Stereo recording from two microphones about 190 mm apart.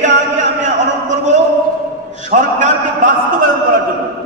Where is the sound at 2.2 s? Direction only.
40° right (ahead or behind).